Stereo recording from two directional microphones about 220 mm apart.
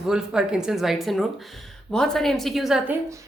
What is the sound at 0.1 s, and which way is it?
Speech, 5° right (ahead or behind).